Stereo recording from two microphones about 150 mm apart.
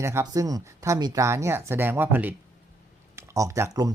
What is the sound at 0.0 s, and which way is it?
Speech, 20° right (ahead or behind).